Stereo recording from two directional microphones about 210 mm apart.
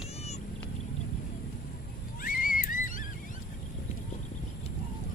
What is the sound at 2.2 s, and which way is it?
Music, 40° left (ahead or behind).